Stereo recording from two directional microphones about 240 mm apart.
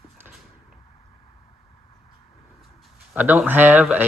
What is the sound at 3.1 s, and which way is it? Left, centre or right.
Speech, centre.